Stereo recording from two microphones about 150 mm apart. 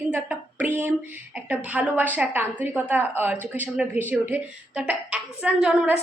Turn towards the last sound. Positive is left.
turn(degrees=-5)  # may be behind; listen again after turning